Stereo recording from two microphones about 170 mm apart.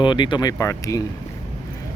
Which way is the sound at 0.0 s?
30° left (ahead or behind).